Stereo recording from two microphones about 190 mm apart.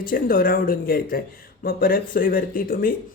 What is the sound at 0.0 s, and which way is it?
Speech, 50° left (ahead or behind).